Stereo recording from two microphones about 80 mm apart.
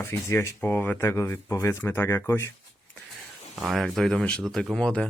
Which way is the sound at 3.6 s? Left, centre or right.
Centre.